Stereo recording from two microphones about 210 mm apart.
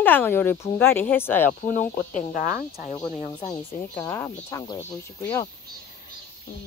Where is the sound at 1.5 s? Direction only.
40° left (ahead or behind).